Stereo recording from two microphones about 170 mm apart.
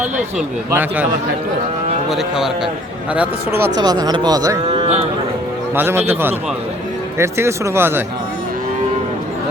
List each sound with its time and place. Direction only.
0.0 s a man's voice: 10° right (ahead or behind)
2.0 s a man's voice: centre (ahead or behind)
3.8 s speech: 25° right (ahead or behind)
4.6 s a sound: 35° right (ahead or behind)
5.7 s a man's voice: 15° right (ahead or behind)